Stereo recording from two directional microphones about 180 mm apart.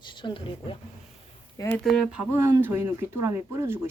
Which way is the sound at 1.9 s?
5° right (ahead or behind).